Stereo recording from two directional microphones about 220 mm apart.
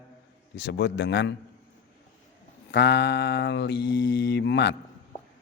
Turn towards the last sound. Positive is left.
turn(degrees=50)  # may be behind; listen again after turning